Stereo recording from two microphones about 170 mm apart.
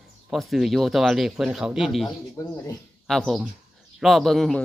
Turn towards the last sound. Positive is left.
turn(degrees=0)  # may be behind; listen again after turning